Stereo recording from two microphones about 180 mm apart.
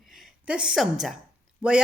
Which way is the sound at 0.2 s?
5° right (ahead or behind).